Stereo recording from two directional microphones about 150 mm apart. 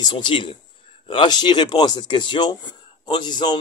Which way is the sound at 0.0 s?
30° left (ahead or behind).